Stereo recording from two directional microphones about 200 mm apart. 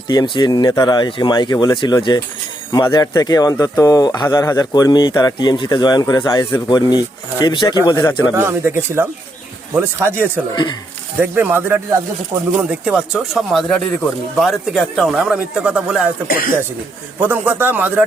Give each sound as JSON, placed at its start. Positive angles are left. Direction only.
{"t": 0.1, "sound": "speech", "side_deg": 20}
{"t": 8.4, "sound": "speech", "side_deg": -10}
{"t": 10.5, "sound": "speech", "side_deg": 20}
{"t": 11.2, "sound": "speech", "side_deg": -10}
{"t": 17.2, "sound": "speech", "side_deg": -10}